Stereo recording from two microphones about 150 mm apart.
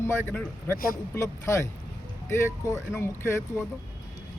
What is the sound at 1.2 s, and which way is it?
A man's voice, 20° left (ahead or behind).